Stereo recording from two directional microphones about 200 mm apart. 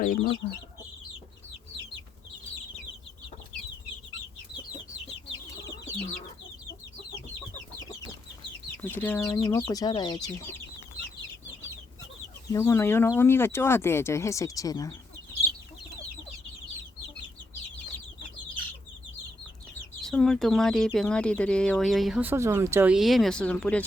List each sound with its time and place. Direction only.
0.0 s speech: 40° left (ahead or behind)
5.6 s chicken: 15° left (ahead or behind)
8.8 s speech: 10° left (ahead or behind)
12.5 s speech: 15° left (ahead or behind)
20.0 s speech: centre (ahead or behind)